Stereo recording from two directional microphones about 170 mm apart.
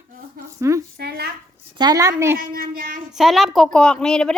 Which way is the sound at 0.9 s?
65° right (ahead or behind).